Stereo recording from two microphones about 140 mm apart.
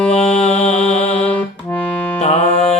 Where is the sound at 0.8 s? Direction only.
10° left (ahead or behind).